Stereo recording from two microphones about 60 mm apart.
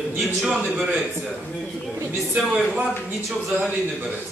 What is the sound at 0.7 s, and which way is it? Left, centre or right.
Speech, centre.